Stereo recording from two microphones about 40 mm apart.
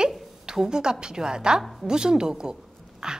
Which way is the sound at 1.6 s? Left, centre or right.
Centre.